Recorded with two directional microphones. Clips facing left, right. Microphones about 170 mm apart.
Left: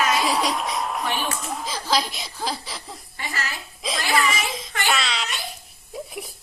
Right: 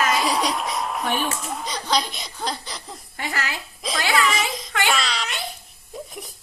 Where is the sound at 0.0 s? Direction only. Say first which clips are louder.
Even; centre (ahead or behind).